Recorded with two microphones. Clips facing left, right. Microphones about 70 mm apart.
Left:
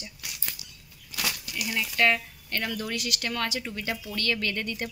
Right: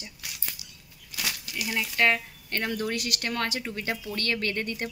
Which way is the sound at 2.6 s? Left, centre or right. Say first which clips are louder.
Right 3 dB; right.